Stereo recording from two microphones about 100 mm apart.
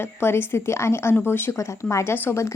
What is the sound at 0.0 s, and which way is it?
Speech, 25° left (ahead or behind).